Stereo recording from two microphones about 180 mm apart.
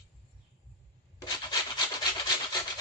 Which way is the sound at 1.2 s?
25° left (ahead or behind).